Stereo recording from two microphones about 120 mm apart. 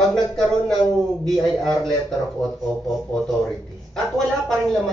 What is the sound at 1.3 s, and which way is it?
Speech, centre (ahead or behind).